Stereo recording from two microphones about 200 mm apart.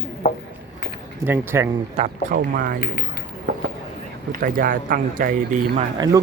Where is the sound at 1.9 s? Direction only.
45° right (ahead or behind).